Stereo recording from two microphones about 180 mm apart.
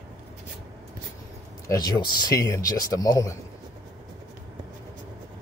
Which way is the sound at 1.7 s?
20° left (ahead or behind).